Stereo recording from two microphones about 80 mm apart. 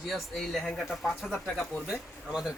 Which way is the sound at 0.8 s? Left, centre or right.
Centre.